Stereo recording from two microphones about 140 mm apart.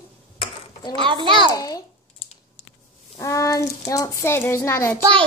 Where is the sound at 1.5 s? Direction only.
25° left (ahead or behind).